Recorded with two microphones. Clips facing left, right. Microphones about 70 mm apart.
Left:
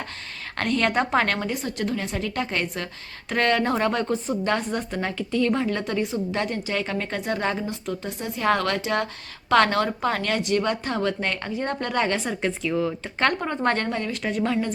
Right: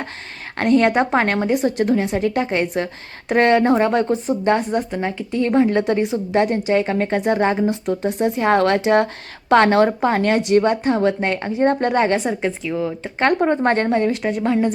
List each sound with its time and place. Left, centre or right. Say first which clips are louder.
0.5 s a woman's voice: right 7 dB; centre
4.8 s a woman's voice: right 5 dB; centre; by 12.2 s right
12.2 s speech: right 4 dB; centre
13.1 s a woman's voice: right 8 dB; right
14.3 s a woman's voice: right 5 dB; centre